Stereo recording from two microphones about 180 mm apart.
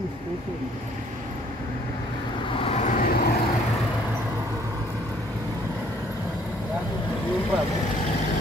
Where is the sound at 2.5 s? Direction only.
30° left (ahead or behind).